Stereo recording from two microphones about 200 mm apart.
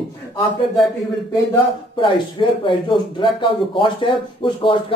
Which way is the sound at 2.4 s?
25° left (ahead or behind).